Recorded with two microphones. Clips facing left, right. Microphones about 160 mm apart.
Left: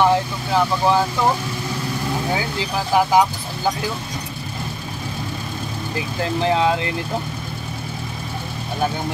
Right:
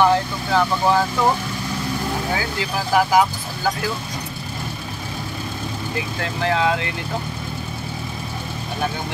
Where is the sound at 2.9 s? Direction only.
20° left (ahead or behind).